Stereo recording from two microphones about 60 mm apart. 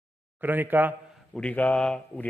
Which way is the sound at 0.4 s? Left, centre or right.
Right.